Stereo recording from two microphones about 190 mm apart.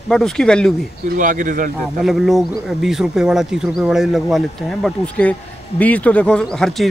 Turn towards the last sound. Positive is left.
turn(degrees=0)  # may be behind; listen again after turning